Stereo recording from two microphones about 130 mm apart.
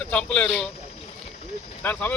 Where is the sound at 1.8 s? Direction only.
10° left (ahead or behind).